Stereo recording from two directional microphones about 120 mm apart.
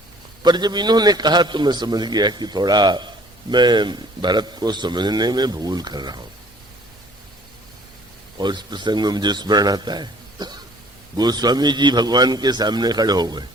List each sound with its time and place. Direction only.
0.4 s a man's voice: 35° right (ahead or behind)
8.4 s a man's voice: 40° right (ahead or behind)